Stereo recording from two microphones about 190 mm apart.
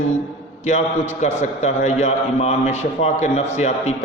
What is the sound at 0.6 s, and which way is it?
A man's voice, 35° left (ahead or behind).